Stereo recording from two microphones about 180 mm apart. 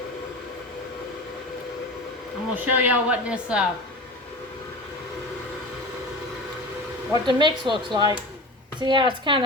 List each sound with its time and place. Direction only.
2.6 s a woman's voice: 10° right (ahead or behind)
7.1 s speech: 25° right (ahead or behind)